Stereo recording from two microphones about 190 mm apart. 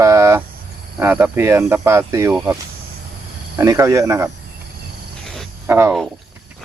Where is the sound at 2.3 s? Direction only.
5° right (ahead or behind).